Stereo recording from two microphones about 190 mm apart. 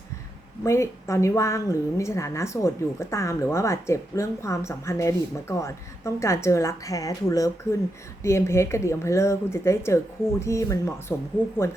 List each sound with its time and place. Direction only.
0.6 s a woman's voice: 15° left (ahead or behind)